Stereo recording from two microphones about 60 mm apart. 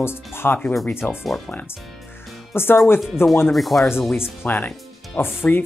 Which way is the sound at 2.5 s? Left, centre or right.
Left.